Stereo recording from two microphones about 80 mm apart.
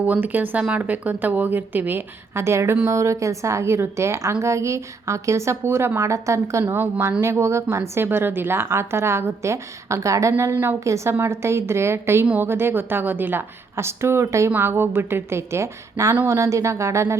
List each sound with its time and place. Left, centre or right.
0.0 s a woman's voice: right